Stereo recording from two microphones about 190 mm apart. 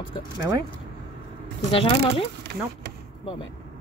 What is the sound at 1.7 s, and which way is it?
Speech, 30° left (ahead or behind).